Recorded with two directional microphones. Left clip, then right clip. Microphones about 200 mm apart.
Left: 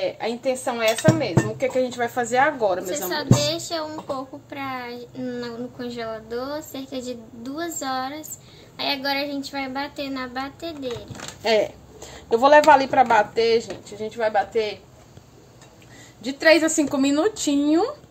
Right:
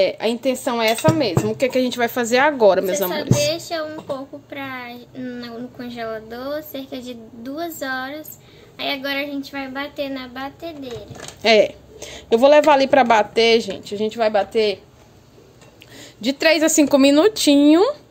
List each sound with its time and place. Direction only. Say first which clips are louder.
0.0 s speech: right 6 dB; 60° right (ahead or behind)
3.3 s a woman's voice: right 3 dB; 5° left (ahead or behind)
11.4 s a woman's voice: right 6 dB; 45° right (ahead or behind)
16.2 s a woman's voice: right 1 dB; 50° right (ahead or behind)